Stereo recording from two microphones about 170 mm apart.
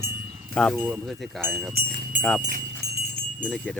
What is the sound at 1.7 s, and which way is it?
Speech, 55° right (ahead or behind).